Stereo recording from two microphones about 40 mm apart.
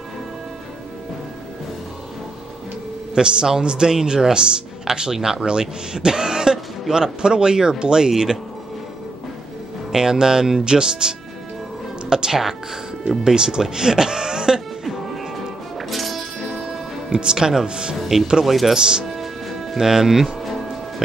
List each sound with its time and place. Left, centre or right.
3.2 s a man's voice: centre
9.9 s speech: centre
15.9 s music: centre
16.6 s music: centre
18.4 s speech: centre
18.8 s a man's voice: centre
19.1 s music: centre
19.8 s speech: centre